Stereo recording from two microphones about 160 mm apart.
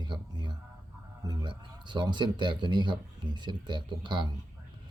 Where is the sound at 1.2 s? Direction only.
25° right (ahead or behind).